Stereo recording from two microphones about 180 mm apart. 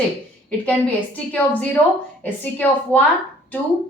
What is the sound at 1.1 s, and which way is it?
Speech, 10° left (ahead or behind).